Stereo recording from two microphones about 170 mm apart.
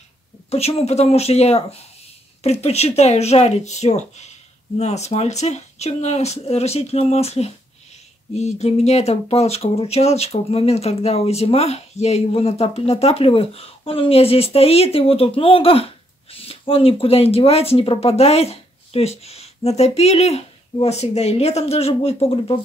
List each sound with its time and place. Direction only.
0.5 s speech: 35° left (ahead or behind)